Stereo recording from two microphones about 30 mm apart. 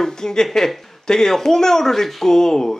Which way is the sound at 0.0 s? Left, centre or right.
Centre.